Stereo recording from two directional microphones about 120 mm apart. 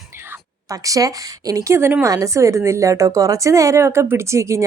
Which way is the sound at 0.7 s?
30° right (ahead or behind).